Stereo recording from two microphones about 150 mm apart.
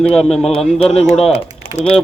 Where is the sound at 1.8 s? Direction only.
50° left (ahead or behind).